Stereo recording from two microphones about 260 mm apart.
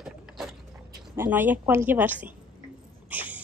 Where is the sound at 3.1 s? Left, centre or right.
Centre.